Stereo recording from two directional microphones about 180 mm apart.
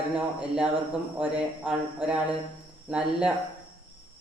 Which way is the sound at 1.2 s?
5° right (ahead or behind).